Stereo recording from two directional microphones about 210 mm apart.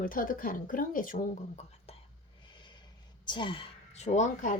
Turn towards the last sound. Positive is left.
turn(degrees=35)  # may be behind; listen again after turning